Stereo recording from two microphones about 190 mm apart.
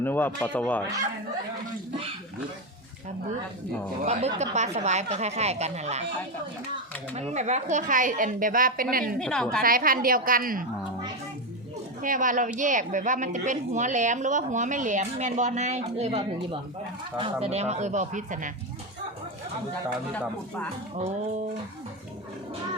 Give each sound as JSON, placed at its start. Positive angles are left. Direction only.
{"t": 0.0, "sound": "speech", "side_deg": 10}
{"t": 4.0, "sound": "a woman's voice", "side_deg": -35}
{"t": 7.2, "sound": "a woman's voice", "side_deg": -40}
{"t": 9.1, "sound": "a woman's voice", "side_deg": 5}
{"t": 9.6, "sound": "a woman's voice", "side_deg": -50}
{"t": 12.0, "sound": "a woman's voice", "side_deg": -45}